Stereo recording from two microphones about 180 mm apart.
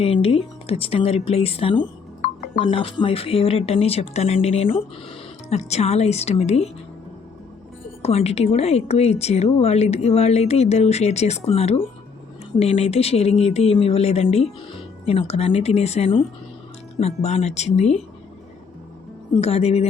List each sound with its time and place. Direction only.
0.0 s speech: 35° left (ahead or behind)
8.0 s speech: 35° left (ahead or behind)
19.4 s speech: 35° left (ahead or behind)